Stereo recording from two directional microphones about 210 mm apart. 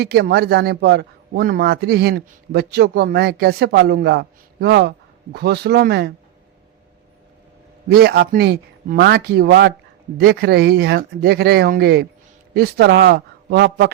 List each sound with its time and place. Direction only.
0.0 s a man's voice: 50° right (ahead or behind)
7.9 s a man's voice: 50° right (ahead or behind)